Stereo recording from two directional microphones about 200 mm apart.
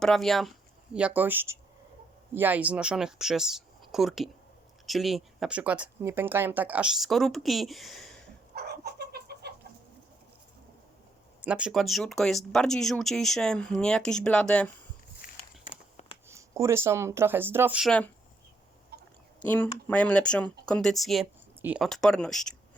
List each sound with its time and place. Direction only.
0.0 s speech: centre (ahead or behind)
8.5 s chicken: 50° right (ahead or behind)
11.4 s speech: 5° right (ahead or behind)
15.2 s a sound: 45° left (ahead or behind)
16.3 s speech: 15° right (ahead or behind); by 18.1 s 5° left (ahead or behind)
18.9 s a sound: 50° right (ahead or behind)
19.4 s speech: 10° left (ahead or behind)